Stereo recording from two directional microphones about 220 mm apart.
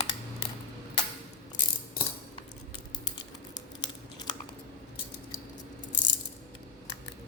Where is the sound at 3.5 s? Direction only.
20° left (ahead or behind).